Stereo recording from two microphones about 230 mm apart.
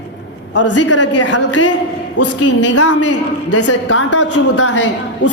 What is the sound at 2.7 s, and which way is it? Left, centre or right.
A man's voice, left.